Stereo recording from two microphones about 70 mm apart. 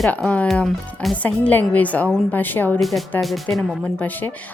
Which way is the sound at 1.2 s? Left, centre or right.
Left.